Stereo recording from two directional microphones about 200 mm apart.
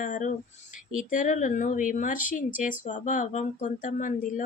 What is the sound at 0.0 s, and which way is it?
Speech, 40° left (ahead or behind).